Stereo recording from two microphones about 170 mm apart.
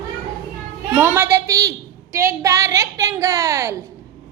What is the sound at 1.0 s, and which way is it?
A woman's voice, 10° right (ahead or behind).